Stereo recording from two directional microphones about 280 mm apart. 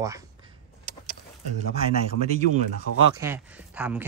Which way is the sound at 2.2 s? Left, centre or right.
Right.